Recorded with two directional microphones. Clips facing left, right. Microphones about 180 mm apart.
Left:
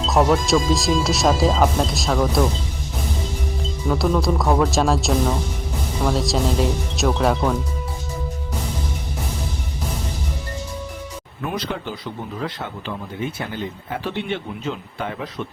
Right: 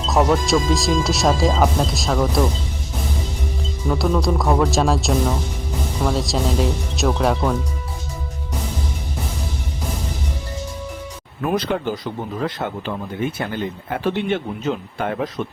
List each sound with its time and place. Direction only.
0.0 s speech: centre (ahead or behind)
3.8 s speech: centre (ahead or behind)
11.4 s speech: 50° right (ahead or behind)
13.9 s speech: 50° right (ahead or behind)